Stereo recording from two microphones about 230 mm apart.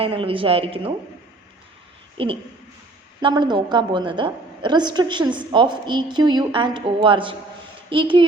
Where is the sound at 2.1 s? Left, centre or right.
Right.